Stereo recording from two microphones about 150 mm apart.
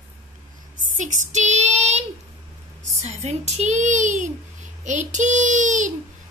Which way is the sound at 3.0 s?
45° right (ahead or behind).